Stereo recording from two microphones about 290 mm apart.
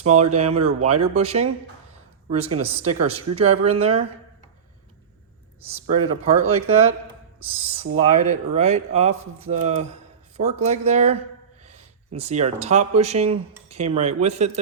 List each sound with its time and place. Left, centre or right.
0.0 s speech: right
0.5 s speech: right
0.9 s speech: right
5.6 s speech: right
7.9 s speech: right